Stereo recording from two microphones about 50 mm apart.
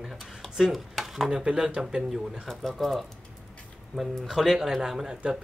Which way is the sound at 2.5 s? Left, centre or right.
Centre.